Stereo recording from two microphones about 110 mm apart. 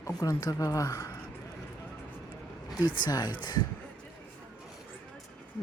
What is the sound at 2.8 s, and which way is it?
Speech, 45° left (ahead or behind).